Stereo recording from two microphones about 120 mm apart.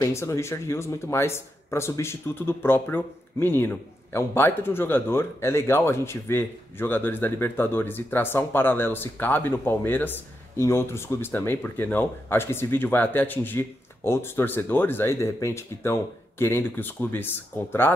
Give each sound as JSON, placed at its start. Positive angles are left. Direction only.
{"t": 0.0, "sound": "speech", "side_deg": 25}